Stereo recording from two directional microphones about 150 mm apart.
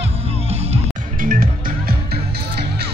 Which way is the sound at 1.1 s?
65° right (ahead or behind).